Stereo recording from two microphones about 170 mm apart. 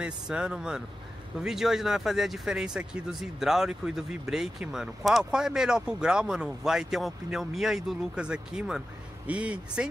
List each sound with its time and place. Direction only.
0.0 s speech: 5° right (ahead or behind)